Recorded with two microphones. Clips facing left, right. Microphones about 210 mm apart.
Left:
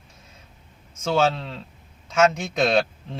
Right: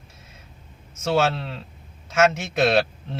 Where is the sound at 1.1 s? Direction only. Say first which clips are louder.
Even; 5° right (ahead or behind).